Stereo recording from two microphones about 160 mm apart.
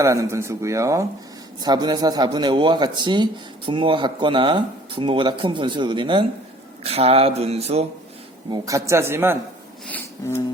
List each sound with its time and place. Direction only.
0.0 s speech: 20° right (ahead or behind); by 7.9 s 40° right (ahead or behind)
8.4 s speech: 25° right (ahead or behind)
9.8 s a sound: 15° left (ahead or behind)